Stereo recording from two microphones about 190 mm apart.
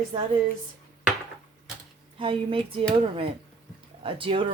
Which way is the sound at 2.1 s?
30° right (ahead or behind).